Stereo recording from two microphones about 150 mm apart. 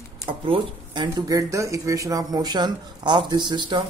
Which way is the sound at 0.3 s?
30° right (ahead or behind).